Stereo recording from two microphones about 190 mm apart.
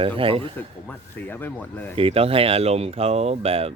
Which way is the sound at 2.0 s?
30° right (ahead or behind).